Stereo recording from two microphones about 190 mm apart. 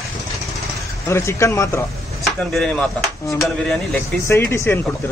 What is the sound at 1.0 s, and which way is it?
Speech, 15° left (ahead or behind).